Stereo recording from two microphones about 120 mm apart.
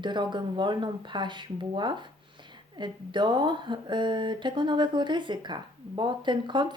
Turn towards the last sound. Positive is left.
turn(degrees=-40)  # may be behind; listen again after turning